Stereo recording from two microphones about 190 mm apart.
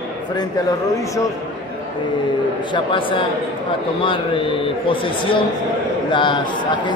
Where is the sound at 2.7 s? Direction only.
25° left (ahead or behind).